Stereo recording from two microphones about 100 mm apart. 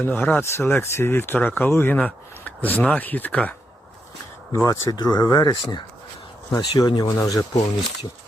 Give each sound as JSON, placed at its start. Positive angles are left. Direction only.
{"t": 0.0, "sound": "speech", "side_deg": 15}
{"t": 4.5, "sound": "speech", "side_deg": 30}
{"t": 4.9, "sound": "speech", "side_deg": 40}